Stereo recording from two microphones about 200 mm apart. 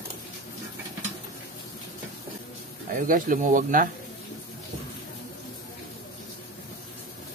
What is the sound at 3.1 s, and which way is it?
Speech, 40° right (ahead or behind).